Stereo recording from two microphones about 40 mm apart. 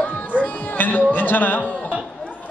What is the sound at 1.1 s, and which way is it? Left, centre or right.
Speech, left.